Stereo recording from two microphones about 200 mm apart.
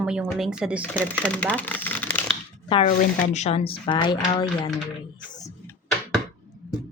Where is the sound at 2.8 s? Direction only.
35° left (ahead or behind).